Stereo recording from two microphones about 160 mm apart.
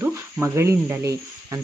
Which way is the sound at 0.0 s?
15° right (ahead or behind).